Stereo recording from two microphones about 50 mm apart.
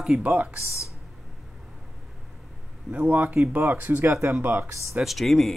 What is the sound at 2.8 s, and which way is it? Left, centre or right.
Speech, right.